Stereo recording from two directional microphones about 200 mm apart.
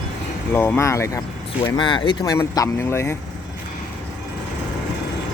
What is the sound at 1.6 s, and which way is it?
Speech, 25° left (ahead or behind).